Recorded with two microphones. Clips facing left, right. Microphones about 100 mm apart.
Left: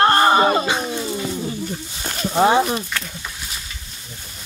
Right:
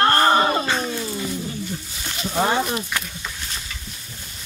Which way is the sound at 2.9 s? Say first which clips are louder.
Even; 15° right (ahead or behind).